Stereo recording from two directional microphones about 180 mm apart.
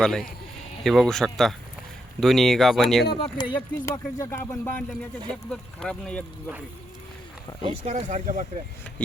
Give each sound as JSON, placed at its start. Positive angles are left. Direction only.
{"t": 0.0, "sound": "speech", "side_deg": 5}
{"t": 3.2, "sound": "speech", "side_deg": 30}
{"t": 3.5, "sound": "speech", "side_deg": 20}
{"t": 7.6, "sound": "speech", "side_deg": -35}
{"t": 9.0, "sound": "speech", "side_deg": 5}